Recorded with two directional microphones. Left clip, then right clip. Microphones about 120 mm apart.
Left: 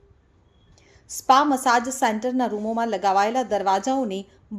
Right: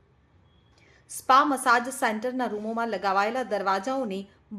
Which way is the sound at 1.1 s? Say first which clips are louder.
Left 3 dB; 30° left (ahead or behind).